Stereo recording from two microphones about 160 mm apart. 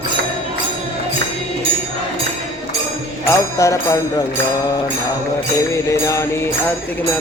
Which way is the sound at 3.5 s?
20° left (ahead or behind).